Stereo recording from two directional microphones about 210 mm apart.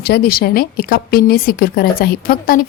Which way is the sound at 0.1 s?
45° left (ahead or behind).